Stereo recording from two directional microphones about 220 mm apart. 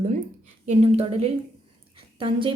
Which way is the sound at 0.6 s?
30° right (ahead or behind).